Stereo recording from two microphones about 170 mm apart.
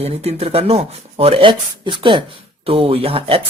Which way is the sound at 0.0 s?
35° right (ahead or behind).